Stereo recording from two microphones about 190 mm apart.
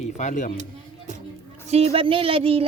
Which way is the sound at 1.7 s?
35° right (ahead or behind).